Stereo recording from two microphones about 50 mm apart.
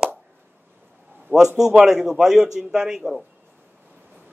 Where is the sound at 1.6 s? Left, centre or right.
Centre.